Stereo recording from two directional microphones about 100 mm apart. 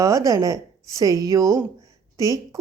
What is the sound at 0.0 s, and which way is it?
A woman's voice, 35° right (ahead or behind).